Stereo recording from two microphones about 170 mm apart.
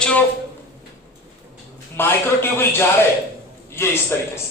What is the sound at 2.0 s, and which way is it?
A man's voice, 15° left (ahead or behind).